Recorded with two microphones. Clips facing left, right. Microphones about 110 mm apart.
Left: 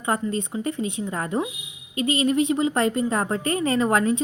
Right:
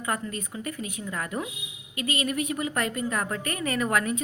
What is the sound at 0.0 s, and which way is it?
A woman's voice, 25° left (ahead or behind).